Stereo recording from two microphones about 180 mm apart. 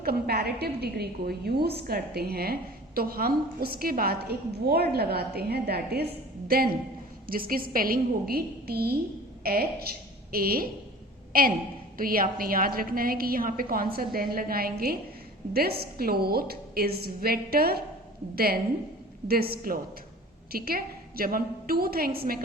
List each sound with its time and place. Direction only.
0.0 s a woman's voice: 60° right (ahead or behind)